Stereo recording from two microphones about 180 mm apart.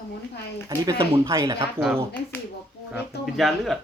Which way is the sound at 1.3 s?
20° right (ahead or behind).